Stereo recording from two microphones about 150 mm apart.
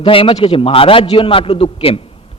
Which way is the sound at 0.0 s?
35° left (ahead or behind).